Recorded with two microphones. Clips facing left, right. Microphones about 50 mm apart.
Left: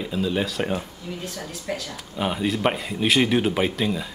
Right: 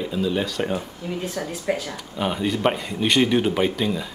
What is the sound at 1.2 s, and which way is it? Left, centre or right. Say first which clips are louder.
Speech: right 5 dB; right.